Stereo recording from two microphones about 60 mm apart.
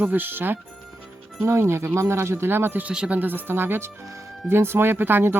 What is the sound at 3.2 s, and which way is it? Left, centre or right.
Speech, right.